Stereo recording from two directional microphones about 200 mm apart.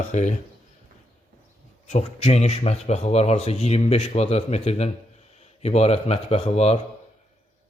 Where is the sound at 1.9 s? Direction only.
35° left (ahead or behind).